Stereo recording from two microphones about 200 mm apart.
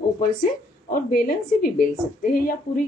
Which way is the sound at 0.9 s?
45° left (ahead or behind).